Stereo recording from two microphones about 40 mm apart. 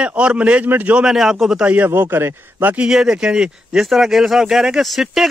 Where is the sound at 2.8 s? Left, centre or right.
Centre.